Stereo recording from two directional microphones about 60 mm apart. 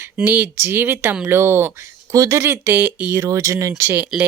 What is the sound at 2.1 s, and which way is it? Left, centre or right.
Speech, right.